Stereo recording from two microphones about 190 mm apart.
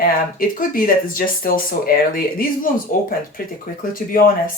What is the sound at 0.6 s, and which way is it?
Speech, 45° left (ahead or behind).